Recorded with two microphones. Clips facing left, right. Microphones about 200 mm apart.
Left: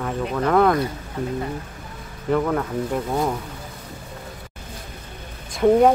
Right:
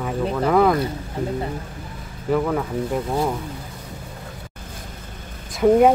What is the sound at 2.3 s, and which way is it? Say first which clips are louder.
Speech: even; 5° right (ahead or behind).